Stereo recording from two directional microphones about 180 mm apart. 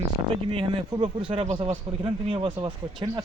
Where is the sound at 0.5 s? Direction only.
25° right (ahead or behind).